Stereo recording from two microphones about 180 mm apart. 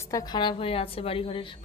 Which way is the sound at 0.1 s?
20° left (ahead or behind).